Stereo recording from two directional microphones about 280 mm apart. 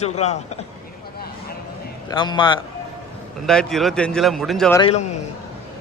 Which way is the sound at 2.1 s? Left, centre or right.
Centre.